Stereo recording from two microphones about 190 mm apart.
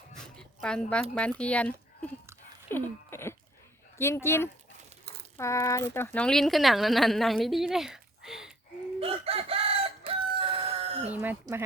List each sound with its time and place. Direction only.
0.1 s a sound: 5° left (ahead or behind)
1.4 s speech: 5° left (ahead or behind)
2.6 s a sound: 10° left (ahead or behind)
3.9 s speech: 15° left (ahead or behind); by 8.5 s 5° right (ahead or behind)
9.0 s chicken: 30° right (ahead or behind)
10.1 s crowing: 30° right (ahead or behind)
11.1 s speech: 10° right (ahead or behind)